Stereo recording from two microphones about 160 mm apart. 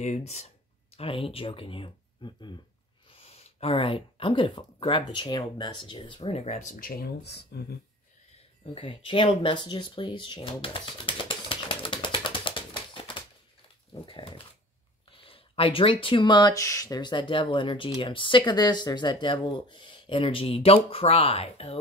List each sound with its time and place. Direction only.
0.0 s speech: 45° left (ahead or behind); by 2.6 s 30° left (ahead or behind)
3.1 s speech: 40° left (ahead or behind); by 7.6 s 85° left
8.7 s a sound: 35° left (ahead or behind)
14.0 s speech: 35° left (ahead or behind)